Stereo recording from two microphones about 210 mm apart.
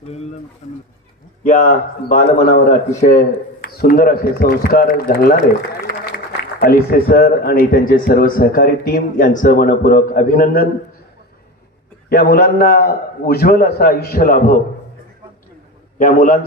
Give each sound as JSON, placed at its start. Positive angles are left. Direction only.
{"t": 0.1, "sound": "a sound", "side_deg": 30}
{"t": 0.6, "sound": "bird", "side_deg": 35}
{"t": 1.5, "sound": "a man's voice", "side_deg": 40}
{"t": 6.6, "sound": "speech", "side_deg": 45}
{"t": 12.0, "sound": "speech", "side_deg": 45}
{"t": 16.0, "sound": "a man's voice", "side_deg": 40}